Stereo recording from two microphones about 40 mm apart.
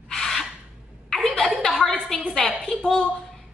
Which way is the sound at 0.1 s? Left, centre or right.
Centre.